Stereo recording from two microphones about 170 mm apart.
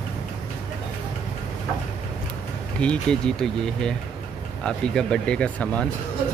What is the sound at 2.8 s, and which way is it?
Speech, 5° left (ahead or behind).